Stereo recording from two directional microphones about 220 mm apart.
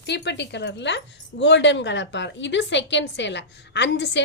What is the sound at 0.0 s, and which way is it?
Speech, 50° left (ahead or behind).